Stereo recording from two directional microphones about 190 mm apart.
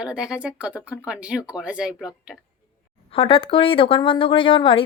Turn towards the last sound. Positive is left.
turn(degrees=25)  # may be behind; listen again after turning